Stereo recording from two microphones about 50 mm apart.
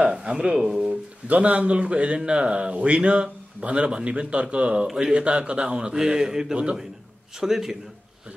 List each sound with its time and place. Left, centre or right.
0.0 s a man's voice: centre
7.3 s a man's voice: centre